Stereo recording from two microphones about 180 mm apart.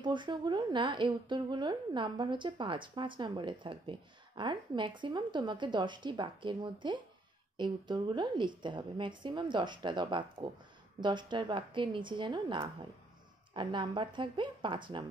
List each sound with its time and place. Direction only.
0.0 s a woman's voice: 25° right (ahead or behind)